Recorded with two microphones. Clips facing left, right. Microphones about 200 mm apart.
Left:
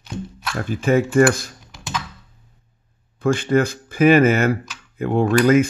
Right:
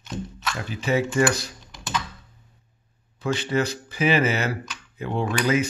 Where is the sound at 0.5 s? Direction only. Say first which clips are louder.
Left 6 dB; 50° left (ahead or behind).